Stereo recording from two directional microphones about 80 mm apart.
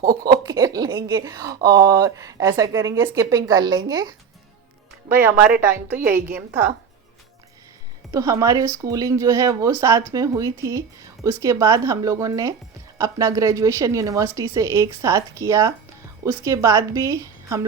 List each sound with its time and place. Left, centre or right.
0.3 s a sound: right
1.0 s speech: right
5.0 s a woman's voice: right
8.1 s speech: right